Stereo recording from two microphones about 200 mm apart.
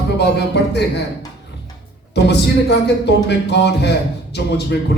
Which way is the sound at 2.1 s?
55° left (ahead or behind).